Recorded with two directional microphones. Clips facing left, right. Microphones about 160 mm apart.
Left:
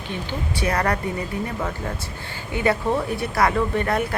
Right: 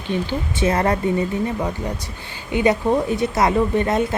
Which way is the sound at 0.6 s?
25° right (ahead or behind).